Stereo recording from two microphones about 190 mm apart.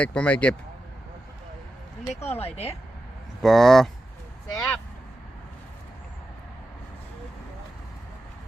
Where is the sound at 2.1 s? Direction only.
35° left (ahead or behind).